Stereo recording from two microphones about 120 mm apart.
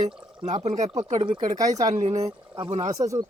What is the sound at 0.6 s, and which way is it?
Speech, 70° right (ahead or behind).